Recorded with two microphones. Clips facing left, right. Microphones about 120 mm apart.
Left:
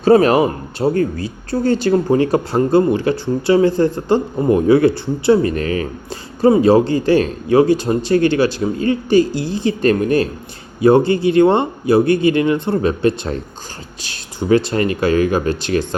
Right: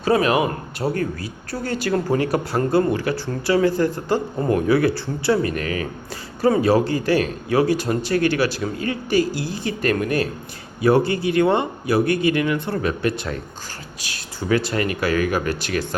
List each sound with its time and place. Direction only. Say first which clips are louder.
0.0 s speech: left 7 dB; 30° left (ahead or behind)
5.4 s speech: left 5 dB; 30° left (ahead or behind)